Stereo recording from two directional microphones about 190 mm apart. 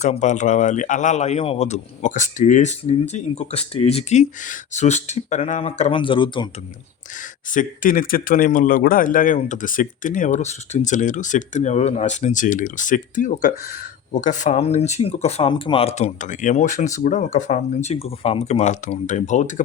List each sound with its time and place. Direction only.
0.0 s speech: 40° left (ahead or behind)
7.5 s speech: 45° left (ahead or behind)